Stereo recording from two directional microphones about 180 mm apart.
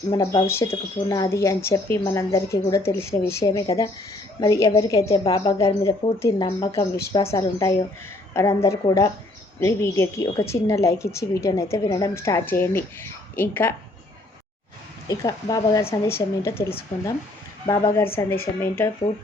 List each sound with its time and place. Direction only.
0.1 s a woman's voice: 20° left (ahead or behind)
15.0 s a woman's voice: 20° left (ahead or behind)